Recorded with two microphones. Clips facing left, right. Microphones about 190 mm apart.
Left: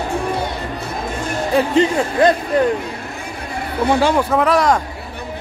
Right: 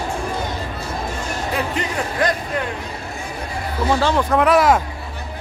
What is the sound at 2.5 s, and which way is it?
Speech, 35° left (ahead or behind).